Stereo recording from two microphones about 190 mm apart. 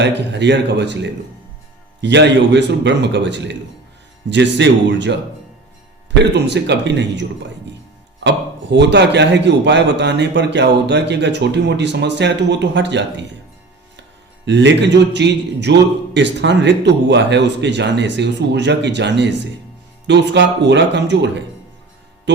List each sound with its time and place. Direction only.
0.0 s speech: 65° right (ahead or behind)
2.0 s speech: 65° right (ahead or behind)
6.3 s a man's voice: 65° right (ahead or behind)
8.7 s a man's voice: 65° right (ahead or behind)
14.4 s a man's voice: 65° right (ahead or behind)